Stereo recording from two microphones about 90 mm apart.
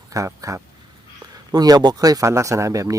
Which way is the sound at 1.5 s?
45° right (ahead or behind).